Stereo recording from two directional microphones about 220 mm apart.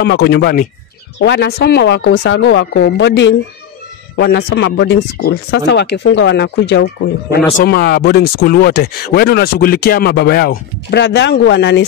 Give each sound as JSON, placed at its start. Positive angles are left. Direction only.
{"t": 0.0, "sound": "speech", "side_deg": 50}